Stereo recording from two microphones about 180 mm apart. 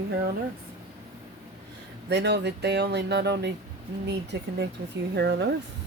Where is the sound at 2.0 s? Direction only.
70° right (ahead or behind).